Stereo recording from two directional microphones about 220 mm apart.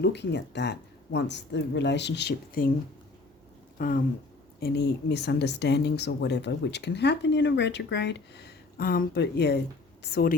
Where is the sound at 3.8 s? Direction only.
40° left (ahead or behind).